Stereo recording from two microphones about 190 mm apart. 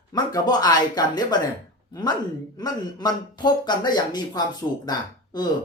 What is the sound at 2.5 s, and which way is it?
Speech, 20° left (ahead or behind).